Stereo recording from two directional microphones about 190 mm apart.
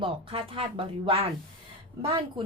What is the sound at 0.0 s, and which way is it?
Speech, 30° right (ahead or behind).